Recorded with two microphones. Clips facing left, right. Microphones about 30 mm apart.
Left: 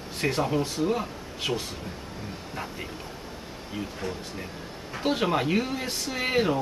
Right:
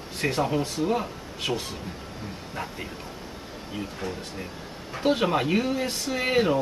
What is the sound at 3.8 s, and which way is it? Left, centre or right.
Speech, centre.